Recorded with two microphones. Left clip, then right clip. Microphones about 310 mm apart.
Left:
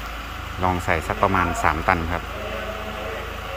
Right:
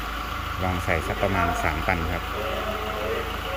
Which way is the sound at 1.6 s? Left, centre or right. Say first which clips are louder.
Left 6 dB; centre.